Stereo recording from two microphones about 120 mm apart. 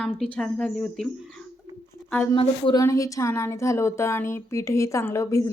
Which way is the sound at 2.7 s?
25° left (ahead or behind).